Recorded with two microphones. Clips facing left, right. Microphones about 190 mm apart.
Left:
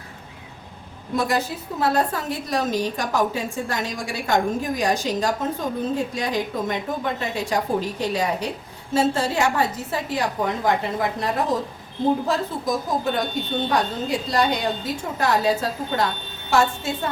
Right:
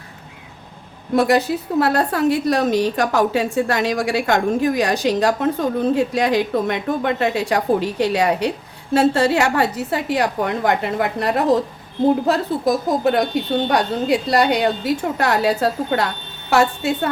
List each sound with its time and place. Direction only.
1.1 s a woman's voice: 70° right (ahead or behind)